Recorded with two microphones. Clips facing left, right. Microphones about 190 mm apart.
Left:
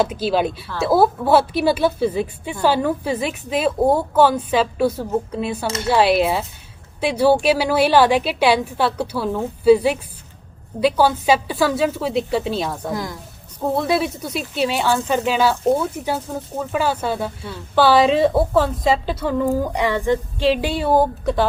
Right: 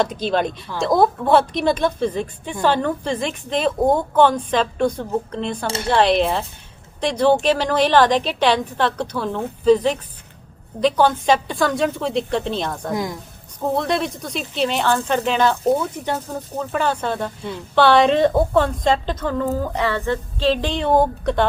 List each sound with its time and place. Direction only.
0.0 s a woman's voice: 5° left (ahead or behind)
12.9 s a woman's voice: 20° right (ahead or behind)
13.7 s a woman's voice: 5° left (ahead or behind)